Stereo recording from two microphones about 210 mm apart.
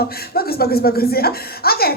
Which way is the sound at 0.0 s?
45° left (ahead or behind).